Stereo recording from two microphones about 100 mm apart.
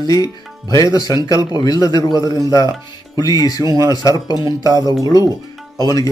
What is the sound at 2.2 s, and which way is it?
Speech, 40° right (ahead or behind).